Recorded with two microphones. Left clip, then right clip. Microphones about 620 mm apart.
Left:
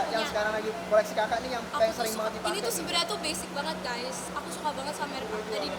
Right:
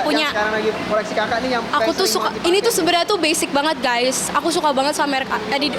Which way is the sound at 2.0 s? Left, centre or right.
Right.